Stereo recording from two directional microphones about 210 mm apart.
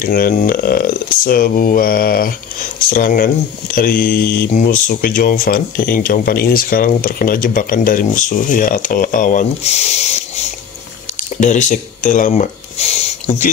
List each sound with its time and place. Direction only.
0.0 s speech: 45° left (ahead or behind)